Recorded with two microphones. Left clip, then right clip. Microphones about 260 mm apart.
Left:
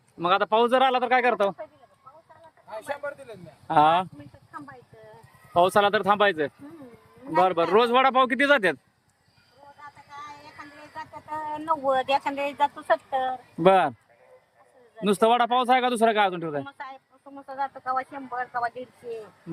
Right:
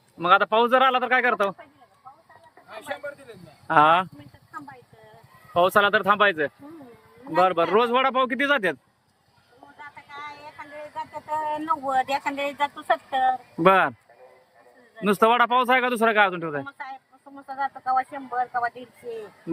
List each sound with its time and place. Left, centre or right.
0.2 s a man's voice: centre
3.7 s a man's voice: centre
5.5 s a man's voice: centre
11.3 s a sound: centre
11.9 s speech: left
12.9 s speech: centre
13.6 s a man's voice: centre
14.9 s a man's voice: centre
17.4 s speech: centre